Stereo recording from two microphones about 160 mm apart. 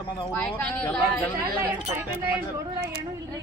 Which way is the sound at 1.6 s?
10° right (ahead or behind).